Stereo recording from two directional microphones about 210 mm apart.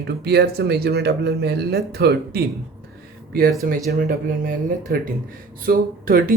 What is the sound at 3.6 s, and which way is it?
Speech, 40° right (ahead or behind).